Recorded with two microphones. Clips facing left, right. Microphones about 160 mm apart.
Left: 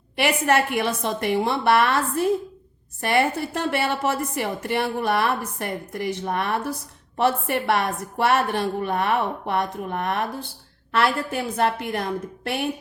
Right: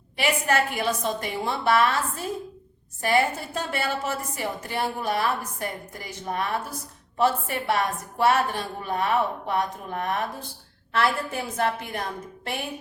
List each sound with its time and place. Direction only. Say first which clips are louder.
0.2 s a woman's voice: left 3 dB; 65° left (ahead or behind)